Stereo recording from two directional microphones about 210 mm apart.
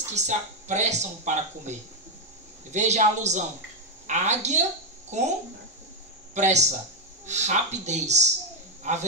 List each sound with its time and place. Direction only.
0.1 s speech: 35° right (ahead or behind)
6.3 s speech: 35° right (ahead or behind)